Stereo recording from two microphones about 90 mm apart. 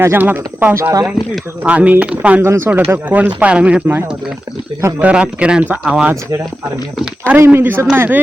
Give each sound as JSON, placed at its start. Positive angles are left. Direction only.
{"t": 0.0, "sound": "speech", "side_deg": -25}
{"t": 0.7, "sound": "speech", "side_deg": -30}
{"t": 1.6, "sound": "speech", "side_deg": -15}
{"t": 2.4, "sound": "speech", "side_deg": -25}
{"t": 7.3, "sound": "speech", "side_deg": -25}